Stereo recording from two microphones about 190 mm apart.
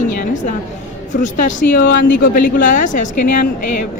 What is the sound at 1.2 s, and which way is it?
Speech, 45° left (ahead or behind).